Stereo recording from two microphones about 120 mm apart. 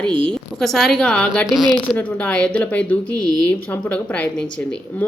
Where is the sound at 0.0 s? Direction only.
45° right (ahead or behind).